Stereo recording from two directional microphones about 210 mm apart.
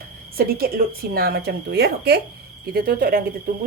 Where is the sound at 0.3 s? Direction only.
45° right (ahead or behind).